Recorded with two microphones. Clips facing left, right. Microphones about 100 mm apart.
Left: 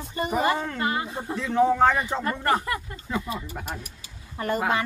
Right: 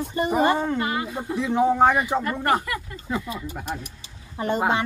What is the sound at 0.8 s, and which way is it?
Speech, 30° left (ahead or behind).